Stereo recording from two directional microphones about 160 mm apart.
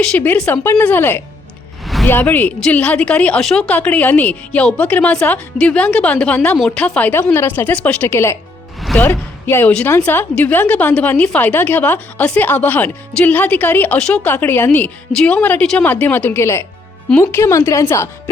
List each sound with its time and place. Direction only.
0.0 s a woman's voice: 5° left (ahead or behind)
8.8 s music: centre (ahead or behind)
9.5 s a woman's voice: 10° left (ahead or behind)